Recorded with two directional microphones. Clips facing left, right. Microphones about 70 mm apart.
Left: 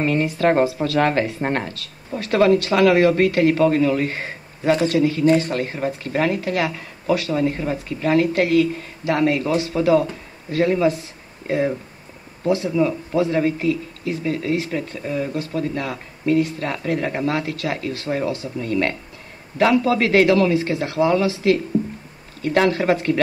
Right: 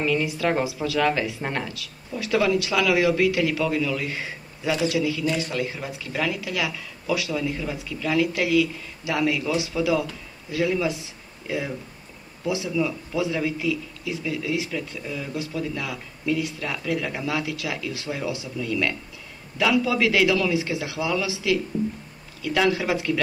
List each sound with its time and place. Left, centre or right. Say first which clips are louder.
0.0 s speech: left 5 dB; left